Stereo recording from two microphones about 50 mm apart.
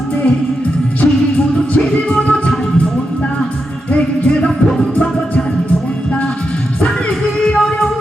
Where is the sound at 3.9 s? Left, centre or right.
Left.